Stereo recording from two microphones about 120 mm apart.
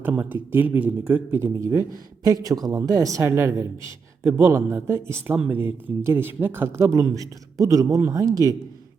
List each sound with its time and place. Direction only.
0.0 s speech: 15° right (ahead or behind); by 8.5 s 30° right (ahead or behind)